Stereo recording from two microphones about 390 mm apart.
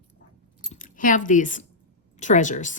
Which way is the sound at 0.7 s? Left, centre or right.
Centre.